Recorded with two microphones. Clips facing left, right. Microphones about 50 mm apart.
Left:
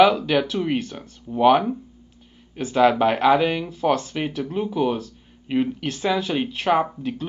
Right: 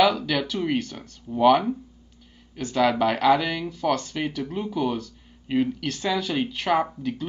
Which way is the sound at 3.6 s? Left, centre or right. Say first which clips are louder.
Left 3 dB; centre.